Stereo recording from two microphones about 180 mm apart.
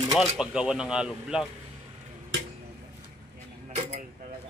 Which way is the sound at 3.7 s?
35° right (ahead or behind).